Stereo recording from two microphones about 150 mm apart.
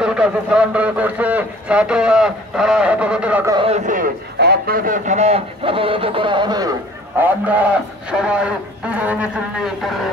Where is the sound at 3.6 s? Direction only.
55° right (ahead or behind); by 6.7 s 25° right (ahead or behind).